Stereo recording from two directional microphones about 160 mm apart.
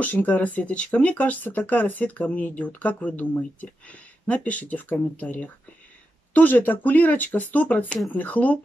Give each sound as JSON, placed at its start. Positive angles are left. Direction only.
{"t": 0.0, "sound": "speech", "side_deg": 10}